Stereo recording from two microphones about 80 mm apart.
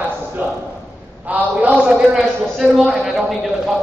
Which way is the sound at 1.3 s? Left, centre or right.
Centre.